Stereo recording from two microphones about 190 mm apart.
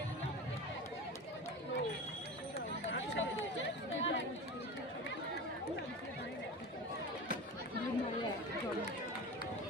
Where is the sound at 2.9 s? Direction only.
75° left (ahead or behind).